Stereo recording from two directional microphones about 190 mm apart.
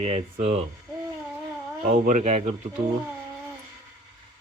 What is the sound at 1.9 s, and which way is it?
Speech, 40° right (ahead or behind).